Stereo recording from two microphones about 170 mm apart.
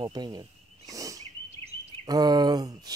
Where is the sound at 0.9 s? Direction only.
20° right (ahead or behind).